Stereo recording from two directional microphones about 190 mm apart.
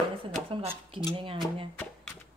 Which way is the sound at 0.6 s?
30° right (ahead or behind).